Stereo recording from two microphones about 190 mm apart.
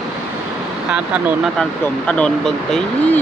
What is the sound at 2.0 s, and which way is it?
Speech, 5° left (ahead or behind).